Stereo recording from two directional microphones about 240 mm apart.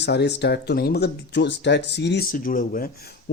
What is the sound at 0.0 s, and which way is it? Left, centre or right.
Speech, left.